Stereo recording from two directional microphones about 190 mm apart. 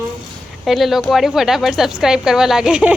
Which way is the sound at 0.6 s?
Centre (ahead or behind).